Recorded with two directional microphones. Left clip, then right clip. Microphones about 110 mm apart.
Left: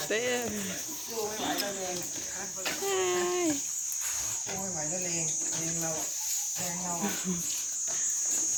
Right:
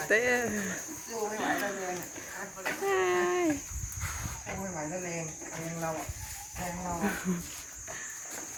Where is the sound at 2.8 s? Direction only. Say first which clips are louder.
Right 2 dB; 5° left (ahead or behind).